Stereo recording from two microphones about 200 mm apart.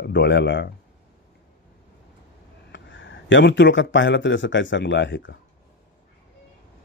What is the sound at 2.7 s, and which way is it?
Speech, 65° left (ahead or behind).